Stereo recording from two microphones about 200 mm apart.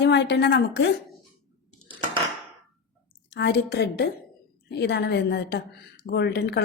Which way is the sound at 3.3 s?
55° left (ahead or behind).